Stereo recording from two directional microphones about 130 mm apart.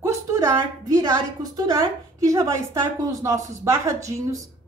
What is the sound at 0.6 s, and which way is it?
A woman's voice, 30° right (ahead or behind).